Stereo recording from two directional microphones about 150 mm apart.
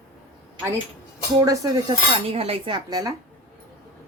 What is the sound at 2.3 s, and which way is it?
Speech, 40° right (ahead or behind).